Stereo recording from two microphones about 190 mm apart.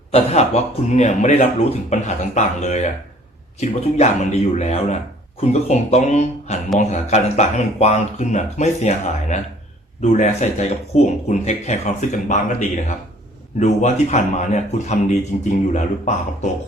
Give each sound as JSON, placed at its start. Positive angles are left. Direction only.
{"t": 0.1, "sound": "a man's voice", "side_deg": 35}